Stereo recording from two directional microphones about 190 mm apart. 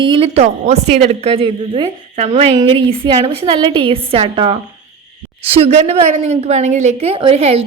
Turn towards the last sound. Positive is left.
turn(degrees=-30)  # may be behind; listen again after turning